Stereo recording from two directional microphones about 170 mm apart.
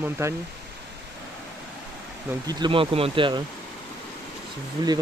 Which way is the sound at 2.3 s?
25° right (ahead or behind).